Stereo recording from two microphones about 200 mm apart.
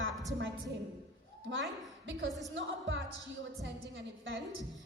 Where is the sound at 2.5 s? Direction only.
70° right (ahead or behind).